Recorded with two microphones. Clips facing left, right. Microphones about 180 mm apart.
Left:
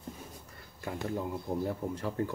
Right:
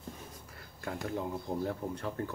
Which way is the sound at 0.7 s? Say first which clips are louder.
Left 1 dB; 5° left (ahead or behind).